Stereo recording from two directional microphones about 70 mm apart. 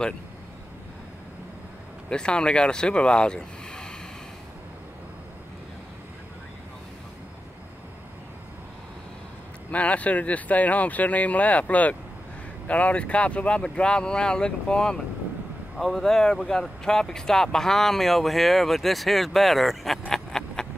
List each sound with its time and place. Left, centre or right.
2.0 s speech: centre
9.7 s speech: centre
20.1 s a sound: centre